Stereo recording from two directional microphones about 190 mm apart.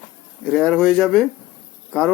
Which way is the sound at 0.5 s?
5° left (ahead or behind).